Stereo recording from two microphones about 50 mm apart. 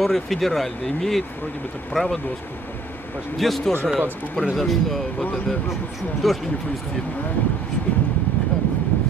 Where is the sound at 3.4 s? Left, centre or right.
Centre.